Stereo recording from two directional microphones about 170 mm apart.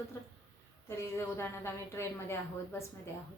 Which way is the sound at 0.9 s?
15° left (ahead or behind).